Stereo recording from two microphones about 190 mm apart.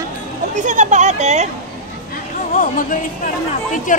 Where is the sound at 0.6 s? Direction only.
40° right (ahead or behind).